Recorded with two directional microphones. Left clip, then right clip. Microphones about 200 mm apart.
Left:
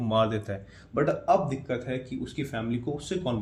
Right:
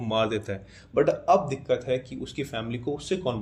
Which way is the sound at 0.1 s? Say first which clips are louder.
Even; 30° right (ahead or behind).